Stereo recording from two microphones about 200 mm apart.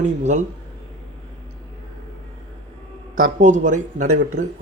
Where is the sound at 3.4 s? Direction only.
35° right (ahead or behind).